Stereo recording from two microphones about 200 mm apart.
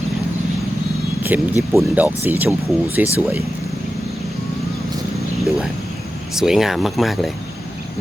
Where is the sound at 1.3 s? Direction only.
10° right (ahead or behind).